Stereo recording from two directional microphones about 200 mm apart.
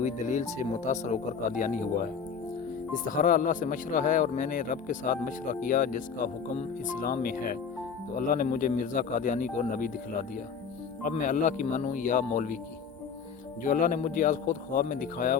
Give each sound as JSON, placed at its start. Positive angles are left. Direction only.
{"t": 0.0, "sound": "speech", "side_deg": 35}
{"t": 3.0, "sound": "speech", "side_deg": 45}
{"t": 13.6, "sound": "speech", "side_deg": 40}